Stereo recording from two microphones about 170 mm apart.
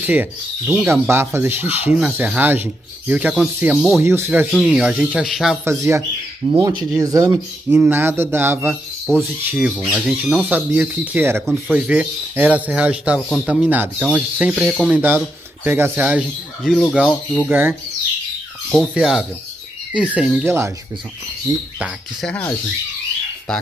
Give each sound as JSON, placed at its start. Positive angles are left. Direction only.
{"t": 0.0, "sound": "speech", "side_deg": -10}
{"t": 4.0, "sound": "speech", "side_deg": -15}
{"t": 5.7, "sound": "speech", "side_deg": -15}
{"t": 9.0, "sound": "speech", "side_deg": 0}
{"t": 11.4, "sound": "speech", "side_deg": 0}
{"t": 15.0, "sound": "speech", "side_deg": -10}
{"t": 17.1, "sound": "speech", "side_deg": 10}
{"t": 17.5, "sound": "speech", "side_deg": -10}
{"t": 18.7, "sound": "speech", "side_deg": 0}
{"t": 20.4, "sound": "speech", "side_deg": -15}
{"t": 22.2, "sound": "speech", "side_deg": 10}